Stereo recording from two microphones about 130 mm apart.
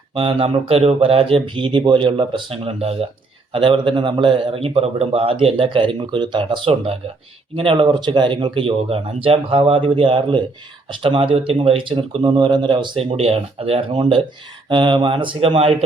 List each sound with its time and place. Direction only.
0.1 s a man's voice: 45° right (ahead or behind)